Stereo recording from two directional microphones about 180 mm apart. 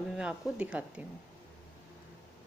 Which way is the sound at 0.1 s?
5° right (ahead or behind).